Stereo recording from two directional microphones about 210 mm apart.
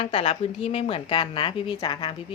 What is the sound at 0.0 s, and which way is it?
Speech, 25° left (ahead or behind).